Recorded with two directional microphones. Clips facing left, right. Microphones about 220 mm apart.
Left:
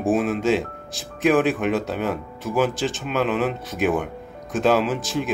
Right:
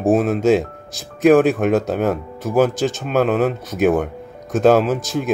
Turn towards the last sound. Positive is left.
turn(degrees=-45)  # may be behind; listen again after turning